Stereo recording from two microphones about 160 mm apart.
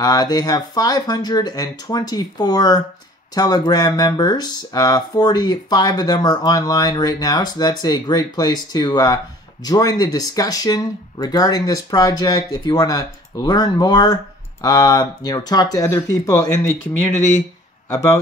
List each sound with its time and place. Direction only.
0.0 s speech: 25° left (ahead or behind)
17.8 s a man's voice: 15° left (ahead or behind)